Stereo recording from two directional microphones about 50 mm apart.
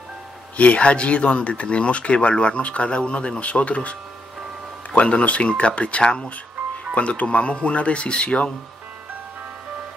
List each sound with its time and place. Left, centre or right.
0.6 s speech: left
4.9 s speech: left